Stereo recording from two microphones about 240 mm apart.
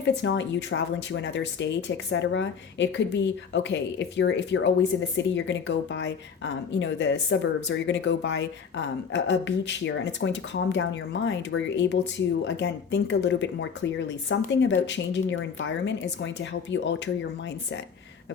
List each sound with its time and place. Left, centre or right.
0.1 s speech: left